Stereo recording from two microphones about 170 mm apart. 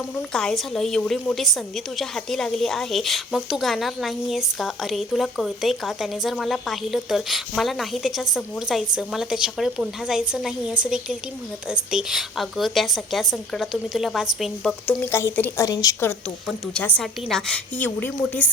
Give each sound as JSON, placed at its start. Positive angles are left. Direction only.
{"t": 0.2, "sound": "a woman's voice", "side_deg": 0}
{"t": 15.0, "sound": "a woman's voice", "side_deg": 15}
{"t": 16.5, "sound": "a woman's voice", "side_deg": 5}